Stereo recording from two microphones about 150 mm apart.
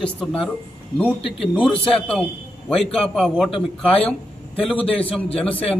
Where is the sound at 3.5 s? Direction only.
40° left (ahead or behind).